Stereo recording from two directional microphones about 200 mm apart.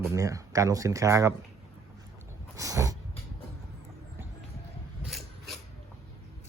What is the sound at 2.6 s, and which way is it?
Speech, 15° right (ahead or behind).